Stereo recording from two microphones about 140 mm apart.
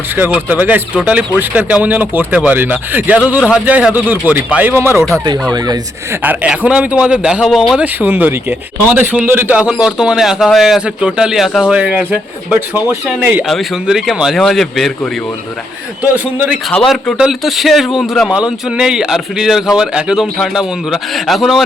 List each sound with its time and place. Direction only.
0.2 s speech: 10° right (ahead or behind)
5.5 s speech: 30° right (ahead or behind)
6.2 s speech: 10° right (ahead or behind)
7.9 s a man's voice: 15° right (ahead or behind)
13.5 s a man's voice: centre (ahead or behind)
16.1 s speech: 10° right (ahead or behind)
16.6 s a man's voice: centre (ahead or behind)